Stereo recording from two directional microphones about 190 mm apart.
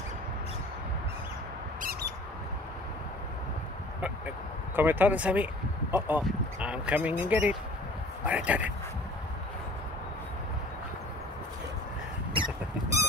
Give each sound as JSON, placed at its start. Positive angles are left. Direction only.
{"t": 1.8, "sound": "mouse", "side_deg": -50}
{"t": 4.7, "sound": "speech", "side_deg": -10}